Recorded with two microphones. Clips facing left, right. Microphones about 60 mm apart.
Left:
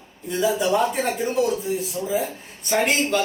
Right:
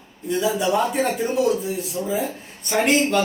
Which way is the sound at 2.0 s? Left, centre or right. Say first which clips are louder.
Right 2 dB; centre.